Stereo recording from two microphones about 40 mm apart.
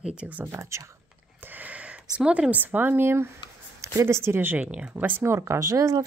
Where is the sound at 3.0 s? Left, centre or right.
Right.